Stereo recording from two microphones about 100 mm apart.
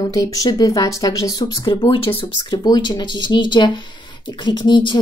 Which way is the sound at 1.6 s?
60° left (ahead or behind).